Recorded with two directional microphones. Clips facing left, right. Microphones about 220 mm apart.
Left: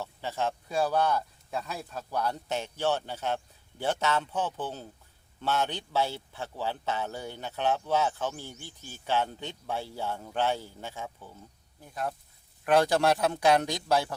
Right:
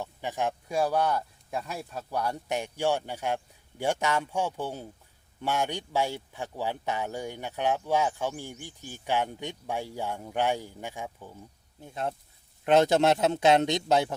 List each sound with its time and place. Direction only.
0.0 s speech: 15° right (ahead or behind)
11.8 s a man's voice: 25° right (ahead or behind)